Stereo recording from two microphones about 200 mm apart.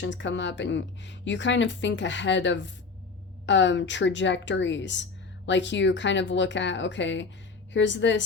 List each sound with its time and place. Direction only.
0.0 s speech: 65° left (ahead or behind)